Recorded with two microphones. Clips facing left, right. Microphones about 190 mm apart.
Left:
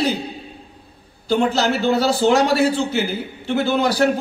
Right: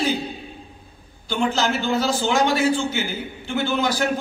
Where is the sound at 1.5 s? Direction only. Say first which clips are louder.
Left 4 dB; 35° left (ahead or behind).